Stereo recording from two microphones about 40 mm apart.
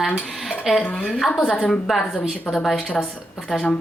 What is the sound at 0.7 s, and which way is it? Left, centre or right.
Speech, centre.